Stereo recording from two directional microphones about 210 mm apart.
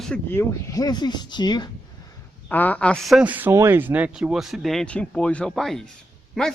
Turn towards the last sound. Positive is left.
turn(degrees=0)  # may be behind; listen again after turning